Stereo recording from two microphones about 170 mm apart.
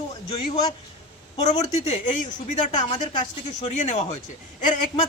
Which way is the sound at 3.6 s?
45° left (ahead or behind).